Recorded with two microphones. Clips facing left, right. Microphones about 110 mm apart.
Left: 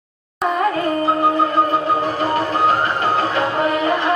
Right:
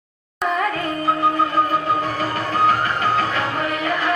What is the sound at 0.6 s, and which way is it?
Music, 30° left (ahead or behind).